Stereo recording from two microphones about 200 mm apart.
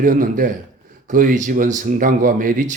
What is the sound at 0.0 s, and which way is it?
Speech, 40° right (ahead or behind).